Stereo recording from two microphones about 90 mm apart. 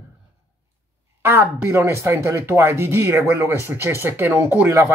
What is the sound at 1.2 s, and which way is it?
Speech, 25° right (ahead or behind).